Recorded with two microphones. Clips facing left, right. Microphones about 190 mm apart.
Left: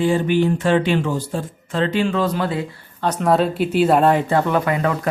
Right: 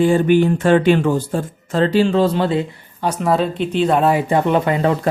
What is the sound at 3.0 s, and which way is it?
Speech, 10° right (ahead or behind).